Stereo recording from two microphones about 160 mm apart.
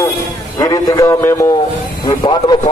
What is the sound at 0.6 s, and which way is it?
A man's voice, 20° left (ahead or behind).